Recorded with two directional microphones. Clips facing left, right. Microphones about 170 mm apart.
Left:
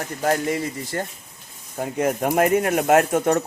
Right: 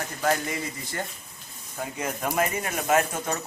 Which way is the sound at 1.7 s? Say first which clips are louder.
Left 9 dB; 50° left (ahead or behind).